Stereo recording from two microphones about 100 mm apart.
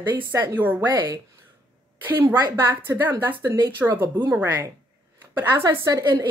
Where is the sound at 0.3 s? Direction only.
25° right (ahead or behind).